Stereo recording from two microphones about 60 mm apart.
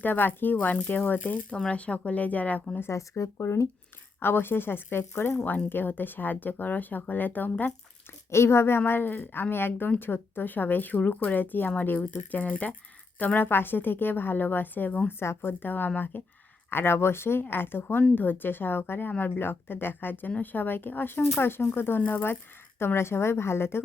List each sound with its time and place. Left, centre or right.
0.0 s speech: left
2.8 s a woman's voice: left
4.2 s speech: left
8.3 s speech: left
15.2 s a woman's voice: left